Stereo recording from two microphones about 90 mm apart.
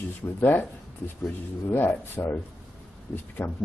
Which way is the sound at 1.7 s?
25° left (ahead or behind).